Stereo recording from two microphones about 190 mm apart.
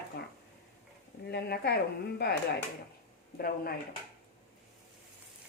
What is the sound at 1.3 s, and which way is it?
Speech, 60° left (ahead or behind).